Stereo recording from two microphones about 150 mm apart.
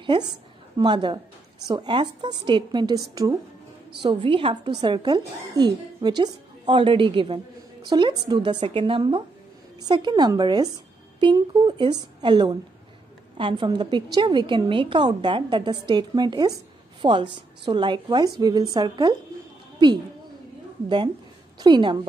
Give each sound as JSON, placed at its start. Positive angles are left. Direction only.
{"t": 0.0, "sound": "a woman's voice", "side_deg": -30}
{"t": 21.5, "sound": "a woman's voice", "side_deg": -30}